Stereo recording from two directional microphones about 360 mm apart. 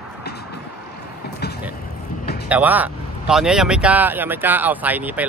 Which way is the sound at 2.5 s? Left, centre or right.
Centre.